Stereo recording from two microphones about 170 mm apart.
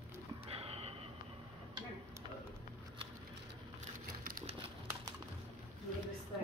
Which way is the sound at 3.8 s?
55° right (ahead or behind).